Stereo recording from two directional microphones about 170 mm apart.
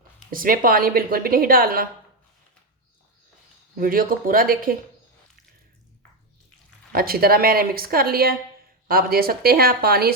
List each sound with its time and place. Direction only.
0.3 s speech: 55° right (ahead or behind)
3.8 s speech: 55° right (ahead or behind)
6.9 s speech: 60° right (ahead or behind)